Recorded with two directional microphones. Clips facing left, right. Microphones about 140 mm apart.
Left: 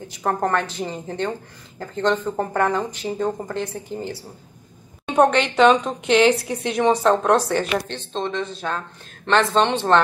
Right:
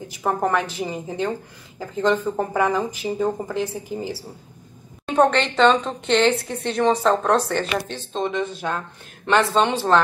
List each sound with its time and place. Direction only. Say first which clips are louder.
0.2 s a woman's voice: even; 5° right (ahead or behind)
8.1 s a woman's voice: right 2 dB; 10° right (ahead or behind)